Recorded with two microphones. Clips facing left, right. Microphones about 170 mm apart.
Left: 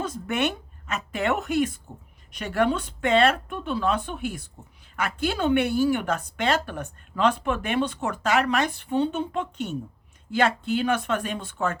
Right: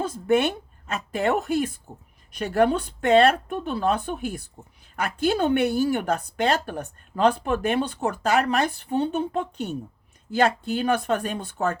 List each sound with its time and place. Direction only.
0.0 s a woman's voice: 30° right (ahead or behind)